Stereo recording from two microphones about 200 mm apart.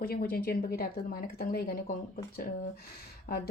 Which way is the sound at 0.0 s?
50° left (ahead or behind).